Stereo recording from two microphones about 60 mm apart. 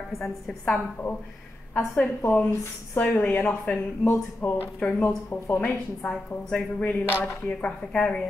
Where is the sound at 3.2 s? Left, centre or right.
Left.